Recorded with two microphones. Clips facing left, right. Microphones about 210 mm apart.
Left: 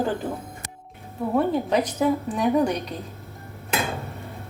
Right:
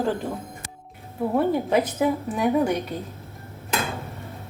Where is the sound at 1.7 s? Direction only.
5° right (ahead or behind).